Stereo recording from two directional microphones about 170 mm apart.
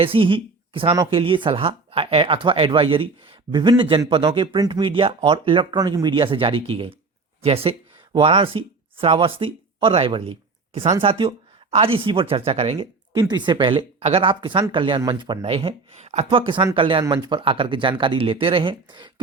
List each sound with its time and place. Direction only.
0.0 s speech: 30° right (ahead or behind)